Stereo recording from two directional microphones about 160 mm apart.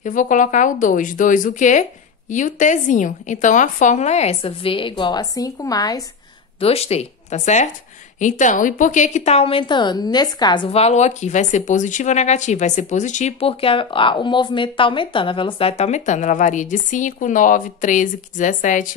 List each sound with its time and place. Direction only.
0.0 s a woman's voice: 55° left (ahead or behind); by 6.0 s 25° left (ahead or behind)
6.6 s a woman's voice: 40° left (ahead or behind)